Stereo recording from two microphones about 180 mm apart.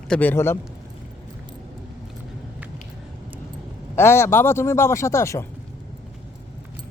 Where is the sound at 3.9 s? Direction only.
15° left (ahead or behind).